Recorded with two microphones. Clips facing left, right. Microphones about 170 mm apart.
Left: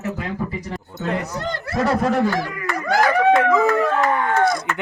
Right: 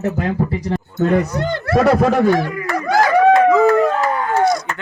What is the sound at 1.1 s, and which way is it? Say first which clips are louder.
Speech: right 4 dB; 65° right (ahead or behind).